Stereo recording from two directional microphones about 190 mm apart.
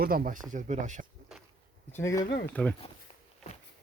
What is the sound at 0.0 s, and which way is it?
Speech, 50° right (ahead or behind).